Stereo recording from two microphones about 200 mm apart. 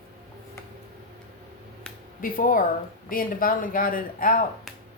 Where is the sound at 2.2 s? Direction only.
45° left (ahead or behind).